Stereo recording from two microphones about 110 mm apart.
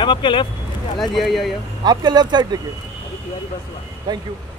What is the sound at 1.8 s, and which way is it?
Speech, 40° right (ahead or behind).